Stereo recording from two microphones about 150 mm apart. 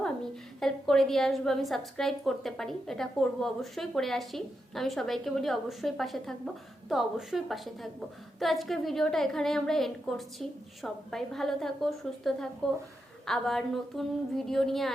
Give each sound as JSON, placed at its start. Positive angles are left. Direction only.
{"t": 0.6, "sound": "a woman's voice", "side_deg": 5}